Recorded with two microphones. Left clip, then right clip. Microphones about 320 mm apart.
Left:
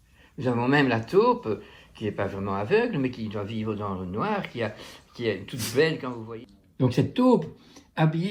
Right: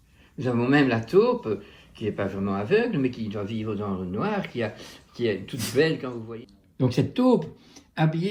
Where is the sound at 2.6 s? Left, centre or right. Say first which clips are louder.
Right 1 dB; centre.